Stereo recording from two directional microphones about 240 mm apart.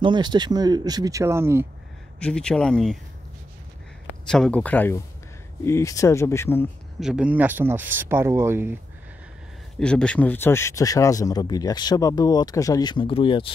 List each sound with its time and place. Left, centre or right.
0.0 s speech: centre
2.1 s speech: centre
4.3 s speech: centre
7.0 s speech: centre
9.8 s speech: centre; by 13.5 s left